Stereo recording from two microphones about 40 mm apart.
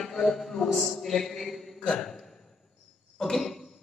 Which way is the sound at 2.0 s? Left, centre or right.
Centre.